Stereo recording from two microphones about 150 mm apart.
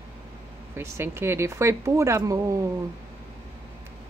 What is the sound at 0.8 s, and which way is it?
A woman's voice, 15° right (ahead or behind).